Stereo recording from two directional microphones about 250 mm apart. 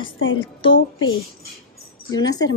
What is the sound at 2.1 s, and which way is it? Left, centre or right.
Speech, centre.